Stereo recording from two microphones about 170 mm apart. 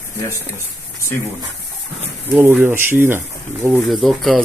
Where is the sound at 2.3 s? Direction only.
10° right (ahead or behind).